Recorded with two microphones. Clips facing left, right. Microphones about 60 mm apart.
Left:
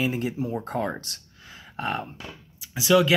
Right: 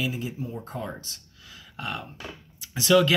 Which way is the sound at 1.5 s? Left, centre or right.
Left.